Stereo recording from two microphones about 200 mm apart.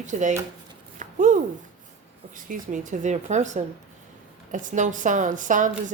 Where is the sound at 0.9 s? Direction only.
40° right (ahead or behind).